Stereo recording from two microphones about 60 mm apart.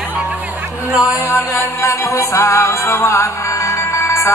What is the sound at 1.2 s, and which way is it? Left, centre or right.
Mantra, left.